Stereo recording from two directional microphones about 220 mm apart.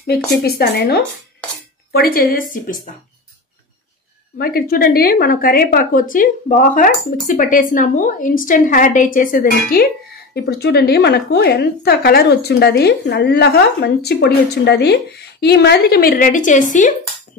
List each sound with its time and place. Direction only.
0.0 s a woman's voice: 45° left (ahead or behind)
4.4 s a woman's voice: 45° left (ahead or behind)